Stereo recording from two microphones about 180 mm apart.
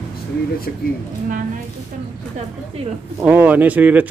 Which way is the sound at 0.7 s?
60° left (ahead or behind).